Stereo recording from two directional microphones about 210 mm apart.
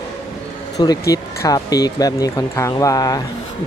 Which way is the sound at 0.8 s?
20° left (ahead or behind).